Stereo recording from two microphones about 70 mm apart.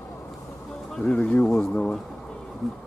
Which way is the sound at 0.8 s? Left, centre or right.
Centre.